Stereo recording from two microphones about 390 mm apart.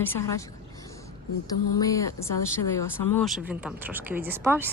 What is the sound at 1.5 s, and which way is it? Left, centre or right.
Speech, left.